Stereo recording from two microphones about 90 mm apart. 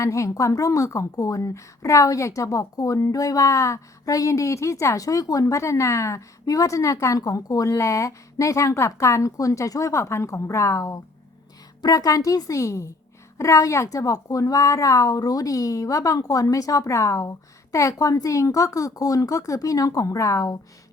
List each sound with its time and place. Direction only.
0.0 s a woman's voice: 35° left (ahead or behind)